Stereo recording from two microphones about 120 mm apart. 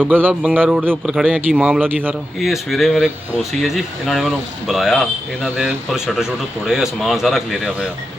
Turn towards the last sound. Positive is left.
turn(degrees=0)  # may be behind; listen again after turning